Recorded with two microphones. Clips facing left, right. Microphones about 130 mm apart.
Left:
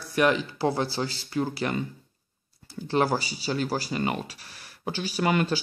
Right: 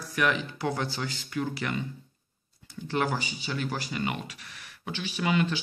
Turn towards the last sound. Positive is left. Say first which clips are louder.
# left 3 dB
turn(degrees=45)  # may be behind; listen again after turning